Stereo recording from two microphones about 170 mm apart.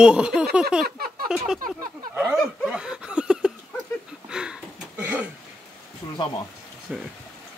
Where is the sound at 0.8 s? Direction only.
60° right (ahead or behind).